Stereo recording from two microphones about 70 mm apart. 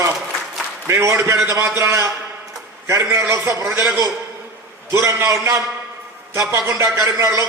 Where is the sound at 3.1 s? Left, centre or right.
Right.